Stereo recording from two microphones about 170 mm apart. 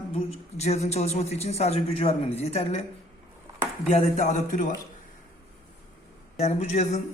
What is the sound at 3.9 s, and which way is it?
Speech, 45° left (ahead or behind).